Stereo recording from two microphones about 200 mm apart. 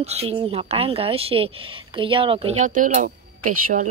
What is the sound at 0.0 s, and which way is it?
Speech, 30° right (ahead or behind).